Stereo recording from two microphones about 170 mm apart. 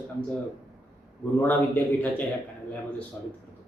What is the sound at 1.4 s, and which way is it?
A man's voice, 10° left (ahead or behind).